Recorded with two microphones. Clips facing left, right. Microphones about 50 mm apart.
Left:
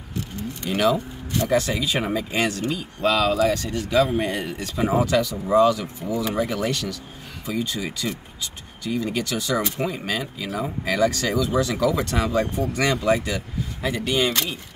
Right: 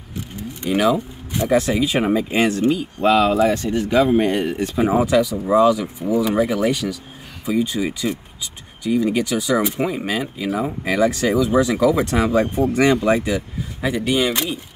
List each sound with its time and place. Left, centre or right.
0.7 s speech: centre